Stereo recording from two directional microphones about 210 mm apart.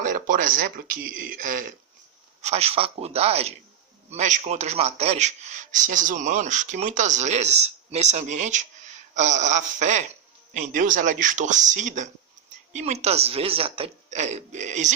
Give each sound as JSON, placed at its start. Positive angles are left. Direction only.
{"t": 0.0, "sound": "a man's voice", "side_deg": -40}
{"t": 2.4, "sound": "a man's voice", "side_deg": -30}